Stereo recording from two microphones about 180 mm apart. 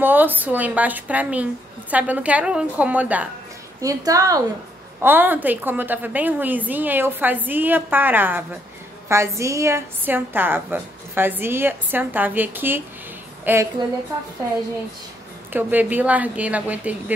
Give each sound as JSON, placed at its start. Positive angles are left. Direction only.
{"t": 0.0, "sound": "a woman's voice", "side_deg": -10}
{"t": 3.8, "sound": "a woman's voice", "side_deg": -20}
{"t": 15.5, "sound": "a woman's voice", "side_deg": -10}